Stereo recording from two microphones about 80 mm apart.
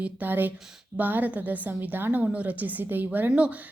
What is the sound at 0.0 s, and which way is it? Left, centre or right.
A woman's voice, right.